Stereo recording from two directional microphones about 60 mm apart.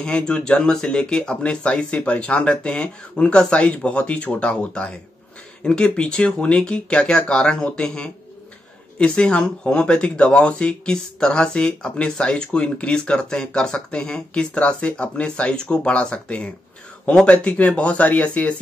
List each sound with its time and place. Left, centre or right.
0.0 s speech: centre